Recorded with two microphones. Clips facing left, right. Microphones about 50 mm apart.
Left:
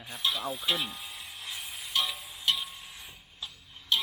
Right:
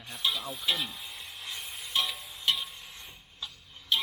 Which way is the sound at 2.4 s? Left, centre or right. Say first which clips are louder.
Even; centre.